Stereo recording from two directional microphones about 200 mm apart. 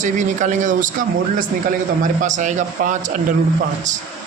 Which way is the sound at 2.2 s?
40° right (ahead or behind).